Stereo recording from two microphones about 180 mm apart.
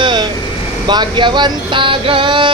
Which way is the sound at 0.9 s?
25° right (ahead or behind).